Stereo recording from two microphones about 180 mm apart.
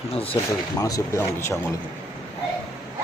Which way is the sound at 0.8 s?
20° left (ahead or behind).